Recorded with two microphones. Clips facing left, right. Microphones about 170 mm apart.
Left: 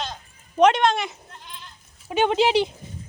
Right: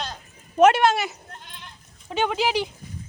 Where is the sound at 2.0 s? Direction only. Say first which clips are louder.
Left 4 dB; 15° left (ahead or behind).